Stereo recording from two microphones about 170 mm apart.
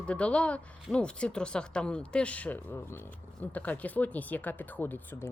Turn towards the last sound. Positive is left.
turn(degrees=15)  # may be behind; listen again after turning